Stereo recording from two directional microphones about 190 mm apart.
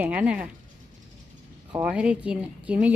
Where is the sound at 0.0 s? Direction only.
5° right (ahead or behind).